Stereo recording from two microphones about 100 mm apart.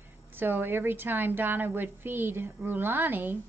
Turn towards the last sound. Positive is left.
turn(degrees=-20)  # may be behind; listen again after turning